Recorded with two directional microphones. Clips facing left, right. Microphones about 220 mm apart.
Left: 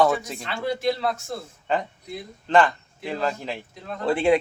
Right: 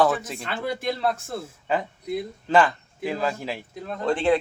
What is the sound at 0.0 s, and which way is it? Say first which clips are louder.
Speech: left 1 dB; centre (ahead or behind).